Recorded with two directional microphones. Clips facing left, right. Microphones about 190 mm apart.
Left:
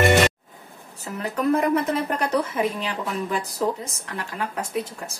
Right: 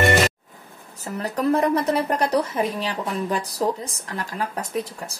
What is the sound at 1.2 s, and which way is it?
Speech, 35° right (ahead or behind).